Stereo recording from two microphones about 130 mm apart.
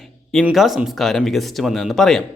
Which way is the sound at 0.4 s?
Centre (ahead or behind).